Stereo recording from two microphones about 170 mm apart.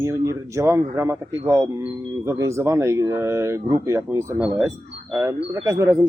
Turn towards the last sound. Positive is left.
turn(degrees=-15)  # may be behind; listen again after turning